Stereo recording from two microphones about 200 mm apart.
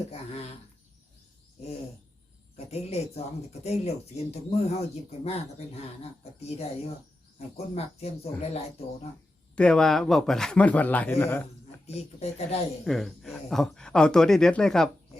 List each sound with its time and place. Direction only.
2.6 s speech: 30° left (ahead or behind)
7.3 s speech: 30° left (ahead or behind)
9.6 s speech: 5° left (ahead or behind)
11.9 s speech: 30° left (ahead or behind)
12.8 s speech: centre (ahead or behind)